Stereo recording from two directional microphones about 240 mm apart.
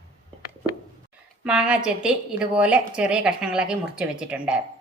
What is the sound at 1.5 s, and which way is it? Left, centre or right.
A woman's voice, centre.